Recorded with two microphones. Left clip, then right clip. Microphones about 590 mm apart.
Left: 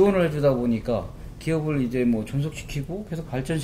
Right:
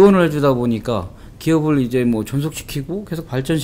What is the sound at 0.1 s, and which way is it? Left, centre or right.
Speech, right.